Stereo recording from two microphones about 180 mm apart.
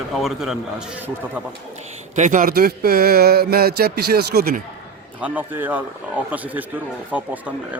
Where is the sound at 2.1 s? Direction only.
45° right (ahead or behind).